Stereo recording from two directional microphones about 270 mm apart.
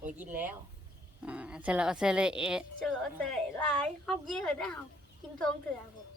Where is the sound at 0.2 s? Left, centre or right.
Centre.